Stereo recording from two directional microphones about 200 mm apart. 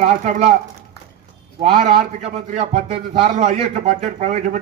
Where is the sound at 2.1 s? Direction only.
35° right (ahead or behind).